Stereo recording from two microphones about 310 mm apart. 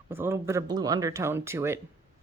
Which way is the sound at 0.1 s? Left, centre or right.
Centre.